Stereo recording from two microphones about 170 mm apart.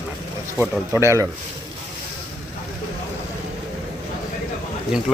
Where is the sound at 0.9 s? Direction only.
15° right (ahead or behind).